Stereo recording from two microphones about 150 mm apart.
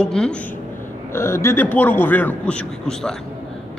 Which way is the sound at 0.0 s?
5° left (ahead or behind).